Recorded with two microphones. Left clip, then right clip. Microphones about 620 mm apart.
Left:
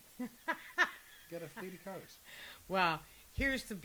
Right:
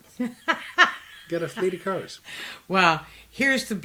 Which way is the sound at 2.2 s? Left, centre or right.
Left.